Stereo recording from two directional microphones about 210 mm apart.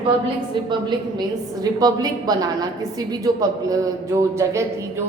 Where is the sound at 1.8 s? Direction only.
20° right (ahead or behind).